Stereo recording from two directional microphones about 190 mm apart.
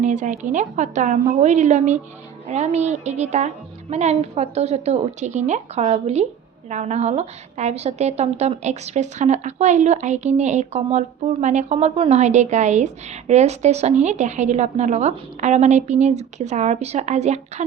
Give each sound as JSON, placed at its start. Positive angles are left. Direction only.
{"t": 0.0, "sound": "a woman's voice", "side_deg": -40}